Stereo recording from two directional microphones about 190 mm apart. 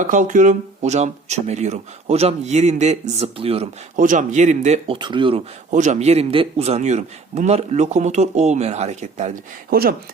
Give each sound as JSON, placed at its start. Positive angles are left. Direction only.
{"t": 0.0, "sound": "speech", "side_deg": -40}
{"t": 3.9, "sound": "speech", "side_deg": -45}
{"t": 4.9, "sound": "speech", "side_deg": -25}
{"t": 5.7, "sound": "speech", "side_deg": -40}